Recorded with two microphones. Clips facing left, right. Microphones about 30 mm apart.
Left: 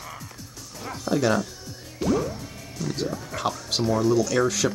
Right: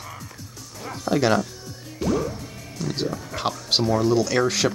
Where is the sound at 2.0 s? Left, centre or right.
Centre.